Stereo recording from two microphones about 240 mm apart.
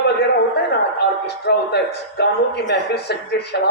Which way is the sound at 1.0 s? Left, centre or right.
Left.